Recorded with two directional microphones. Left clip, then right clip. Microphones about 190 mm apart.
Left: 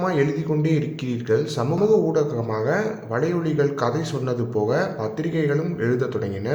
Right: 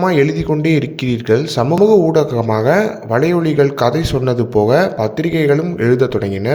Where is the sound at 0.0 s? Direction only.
40° right (ahead or behind).